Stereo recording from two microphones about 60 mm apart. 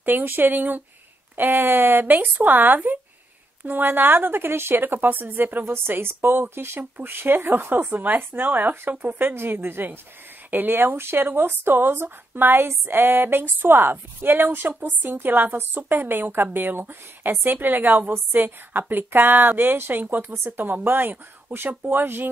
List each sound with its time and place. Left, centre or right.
0.0 s speech: right